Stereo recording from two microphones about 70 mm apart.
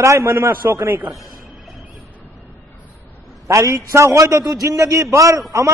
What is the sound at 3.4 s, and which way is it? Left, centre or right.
A man's voice, right.